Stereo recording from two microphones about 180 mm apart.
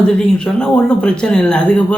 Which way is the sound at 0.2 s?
5° left (ahead or behind).